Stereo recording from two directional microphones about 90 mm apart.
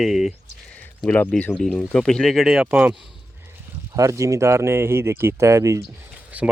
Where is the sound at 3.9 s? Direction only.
35° right (ahead or behind).